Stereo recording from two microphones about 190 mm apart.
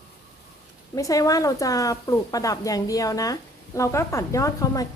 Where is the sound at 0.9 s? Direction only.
15° left (ahead or behind).